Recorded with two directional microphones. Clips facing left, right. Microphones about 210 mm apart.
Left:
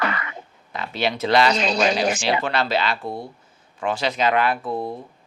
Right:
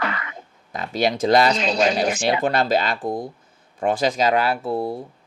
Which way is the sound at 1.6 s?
70° left (ahead or behind).